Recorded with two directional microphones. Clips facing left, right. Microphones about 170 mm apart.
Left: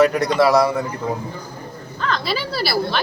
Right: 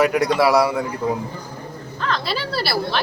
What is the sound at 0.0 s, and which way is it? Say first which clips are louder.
Speech: left 1 dB; 10° right (ahead or behind).